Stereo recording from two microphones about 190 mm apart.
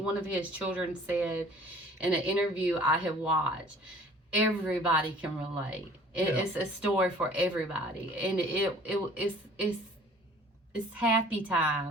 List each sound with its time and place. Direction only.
0.0 s speech: 5° right (ahead or behind)
4.3 s speech: 5° right (ahead or behind)